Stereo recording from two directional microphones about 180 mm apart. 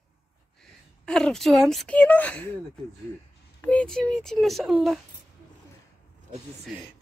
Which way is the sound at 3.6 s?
5° left (ahead or behind).